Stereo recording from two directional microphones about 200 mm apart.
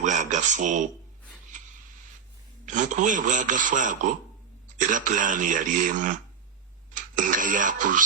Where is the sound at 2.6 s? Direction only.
40° right (ahead or behind).